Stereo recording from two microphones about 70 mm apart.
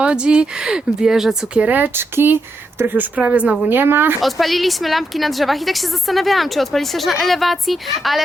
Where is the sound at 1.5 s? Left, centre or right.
Right.